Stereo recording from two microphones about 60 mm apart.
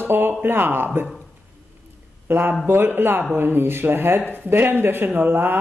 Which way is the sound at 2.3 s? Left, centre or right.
Right.